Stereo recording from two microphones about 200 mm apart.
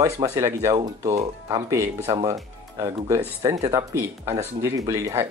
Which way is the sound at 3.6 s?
15° right (ahead or behind).